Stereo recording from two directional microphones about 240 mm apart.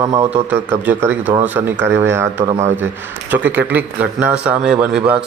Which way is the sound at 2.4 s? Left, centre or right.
Right.